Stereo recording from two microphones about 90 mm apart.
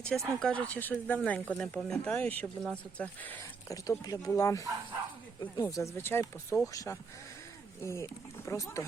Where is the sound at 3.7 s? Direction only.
40° left (ahead or behind).